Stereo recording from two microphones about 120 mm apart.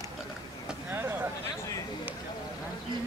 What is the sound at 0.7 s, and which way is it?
Vehicle, 15° right (ahead or behind).